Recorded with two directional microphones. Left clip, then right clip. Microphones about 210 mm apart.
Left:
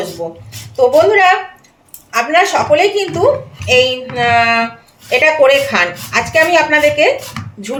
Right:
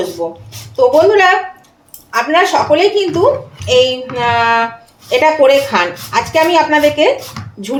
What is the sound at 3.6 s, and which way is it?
A woman's voice, 15° right (ahead or behind).